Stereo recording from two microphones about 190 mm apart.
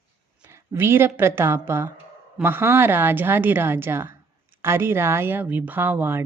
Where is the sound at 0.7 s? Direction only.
10° right (ahead or behind).